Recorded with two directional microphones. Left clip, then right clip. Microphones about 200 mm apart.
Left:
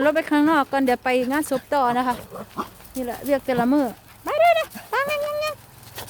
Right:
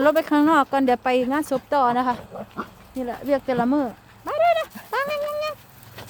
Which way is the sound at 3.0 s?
Centre (ahead or behind).